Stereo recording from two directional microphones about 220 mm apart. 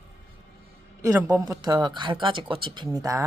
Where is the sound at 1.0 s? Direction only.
15° right (ahead or behind).